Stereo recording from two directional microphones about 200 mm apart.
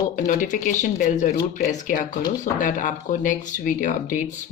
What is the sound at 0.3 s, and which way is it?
Speech, 40° left (ahead or behind).